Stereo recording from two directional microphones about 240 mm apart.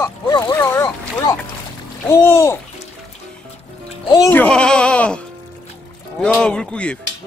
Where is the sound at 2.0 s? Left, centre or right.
Centre.